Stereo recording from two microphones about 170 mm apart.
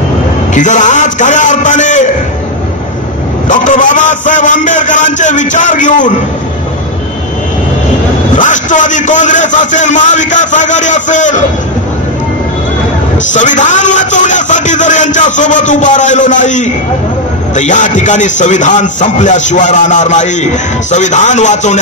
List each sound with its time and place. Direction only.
0.6 s a man's voice: 45° left (ahead or behind)
3.4 s a man's voice: 50° left (ahead or behind)
8.4 s a man's voice: 50° left (ahead or behind)
13.3 s a man's voice: 45° left (ahead or behind)